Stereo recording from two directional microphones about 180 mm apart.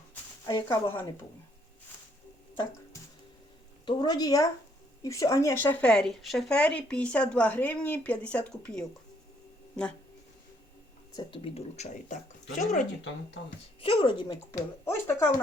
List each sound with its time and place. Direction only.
0.4 s speech: 15° left (ahead or behind)
3.8 s a woman's voice: 25° left (ahead or behind); by 8.8 s 5° left (ahead or behind)
11.1 s speech: 25° left (ahead or behind); by 12.9 s 45° left (ahead or behind)
13.8 s a woman's voice: 30° left (ahead or behind)
14.5 s speech: 15° left (ahead or behind)